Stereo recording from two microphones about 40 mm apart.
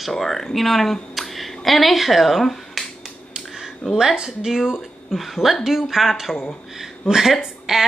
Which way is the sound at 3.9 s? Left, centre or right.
Centre.